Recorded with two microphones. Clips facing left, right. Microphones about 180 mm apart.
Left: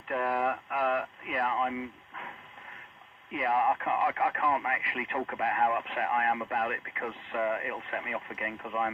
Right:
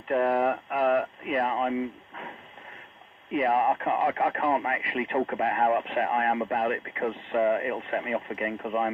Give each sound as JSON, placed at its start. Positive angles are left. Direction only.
{"t": 0.1, "sound": "speech", "side_deg": -30}
{"t": 0.7, "sound": "a sound", "side_deg": -25}
{"t": 3.3, "sound": "speech", "side_deg": -25}